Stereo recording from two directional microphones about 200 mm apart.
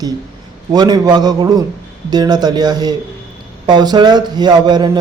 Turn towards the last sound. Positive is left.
turn(degrees=-20)  # may be behind; listen again after turning